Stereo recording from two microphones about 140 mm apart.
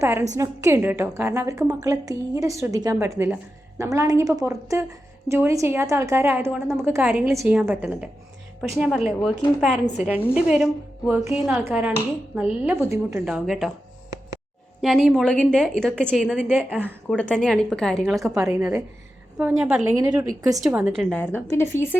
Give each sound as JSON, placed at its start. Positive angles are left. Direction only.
{"t": 0.0, "sound": "a woman's voice", "side_deg": -15}
{"t": 13.2, "sound": "speech", "side_deg": -5}
{"t": 14.8, "sound": "a woman's voice", "side_deg": 0}
{"t": 17.1, "sound": "speech", "side_deg": 10}
{"t": 18.2, "sound": "a woman's voice", "side_deg": -20}
{"t": 19.4, "sound": "speech", "side_deg": -5}
{"t": 20.0, "sound": "a woman's voice", "side_deg": -25}
{"t": 20.7, "sound": "a woman's voice", "side_deg": -15}
{"t": 20.9, "sound": "speech", "side_deg": 5}